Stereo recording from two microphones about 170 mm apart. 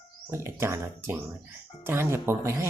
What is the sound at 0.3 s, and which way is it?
Speech, 15° right (ahead or behind).